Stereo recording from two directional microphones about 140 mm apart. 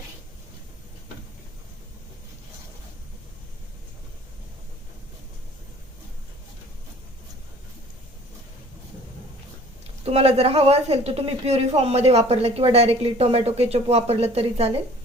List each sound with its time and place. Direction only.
10.0 s a woman's voice: 45° right (ahead or behind)